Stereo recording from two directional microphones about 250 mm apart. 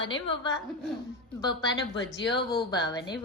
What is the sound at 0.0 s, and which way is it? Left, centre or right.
Speech, left.